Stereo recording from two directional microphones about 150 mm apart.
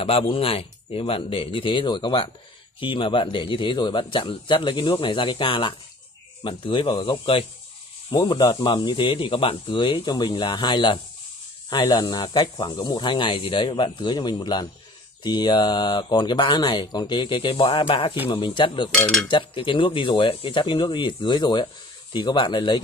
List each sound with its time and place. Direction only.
0.0 s a man's voice: 40° left (ahead or behind)
18.9 s cutlery: 5° left (ahead or behind)
19.2 s a man's voice: 30° left (ahead or behind)